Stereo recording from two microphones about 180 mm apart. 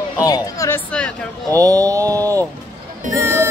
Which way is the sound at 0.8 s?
5° left (ahead or behind).